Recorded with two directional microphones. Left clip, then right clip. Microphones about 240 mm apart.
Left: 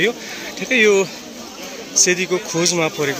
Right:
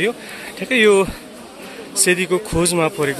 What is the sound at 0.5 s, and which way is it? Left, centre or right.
Speech, centre.